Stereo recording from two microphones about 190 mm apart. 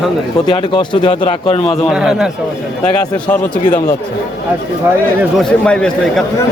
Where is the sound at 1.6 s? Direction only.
Centre (ahead or behind).